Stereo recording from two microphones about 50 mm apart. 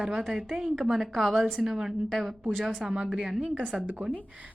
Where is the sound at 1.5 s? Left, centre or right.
Centre.